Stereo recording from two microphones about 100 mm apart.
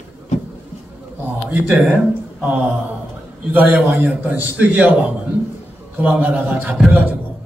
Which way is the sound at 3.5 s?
15° right (ahead or behind).